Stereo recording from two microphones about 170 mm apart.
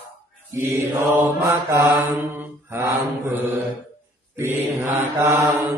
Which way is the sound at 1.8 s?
10° right (ahead or behind).